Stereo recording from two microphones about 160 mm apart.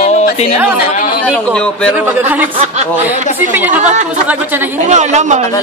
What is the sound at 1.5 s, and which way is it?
Speech, 5° left (ahead or behind).